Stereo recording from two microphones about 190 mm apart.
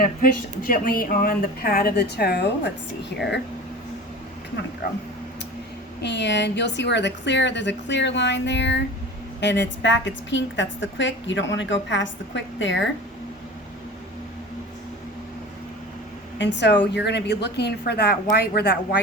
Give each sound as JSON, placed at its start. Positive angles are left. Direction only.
{"t": 0.0, "sound": "speech", "side_deg": 50}
{"t": 6.0, "sound": "a woman's voice", "side_deg": 65}
{"t": 16.4, "sound": "a woman's voice", "side_deg": 70}